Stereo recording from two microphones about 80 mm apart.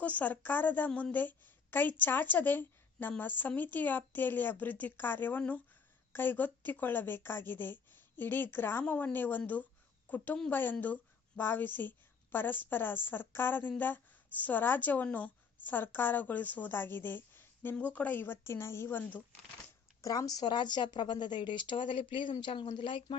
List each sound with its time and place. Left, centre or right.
0.0 s a woman's voice: centre
0.9 s a woman's voice: centre
1.1 s a woman's voice: left
8.8 s a woman's voice: centre
18.4 s speech: left
20.0 s speech: left